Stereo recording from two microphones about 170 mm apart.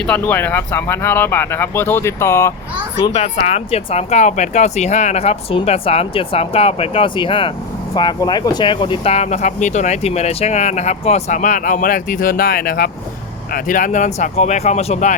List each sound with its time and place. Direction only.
0.0 s speech: 10° left (ahead or behind)
3.0 s speech: 35° left (ahead or behind)